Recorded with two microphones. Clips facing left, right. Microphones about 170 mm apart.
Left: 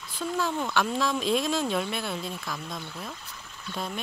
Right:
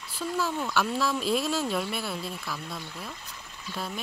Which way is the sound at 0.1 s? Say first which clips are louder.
Left 1 dB; 5° right (ahead or behind).